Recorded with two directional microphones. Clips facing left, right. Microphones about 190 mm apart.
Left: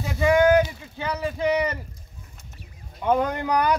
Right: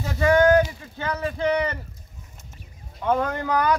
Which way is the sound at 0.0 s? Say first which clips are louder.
Right 1 dB; 10° left (ahead or behind).